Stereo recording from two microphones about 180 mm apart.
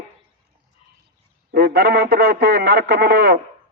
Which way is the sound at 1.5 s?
55° right (ahead or behind).